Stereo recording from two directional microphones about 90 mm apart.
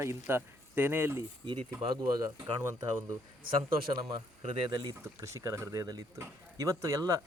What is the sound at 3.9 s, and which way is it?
Speech, 65° right (ahead or behind).